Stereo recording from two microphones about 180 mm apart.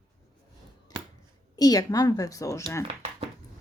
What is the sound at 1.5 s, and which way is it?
A woman's voice, 20° left (ahead or behind).